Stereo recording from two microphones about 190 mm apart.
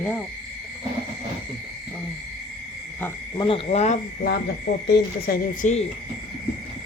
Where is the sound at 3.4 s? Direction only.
30° left (ahead or behind).